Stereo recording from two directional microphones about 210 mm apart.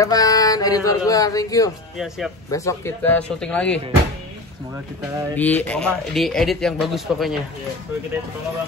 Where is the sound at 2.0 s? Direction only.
Centre (ahead or behind).